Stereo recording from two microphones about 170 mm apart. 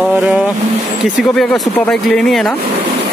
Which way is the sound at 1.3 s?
5° left (ahead or behind).